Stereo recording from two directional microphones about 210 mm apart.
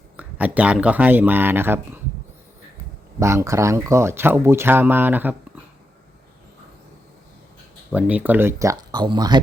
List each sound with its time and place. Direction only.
0.2 s speech: 5° right (ahead or behind)
3.2 s speech: 15° right (ahead or behind)
7.9 s speech: 5° right (ahead or behind)